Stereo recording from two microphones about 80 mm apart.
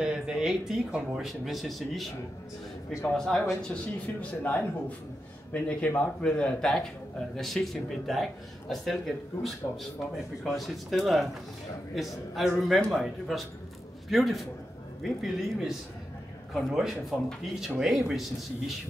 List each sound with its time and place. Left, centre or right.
0.0 s speech: centre
3.2 s a man's voice: centre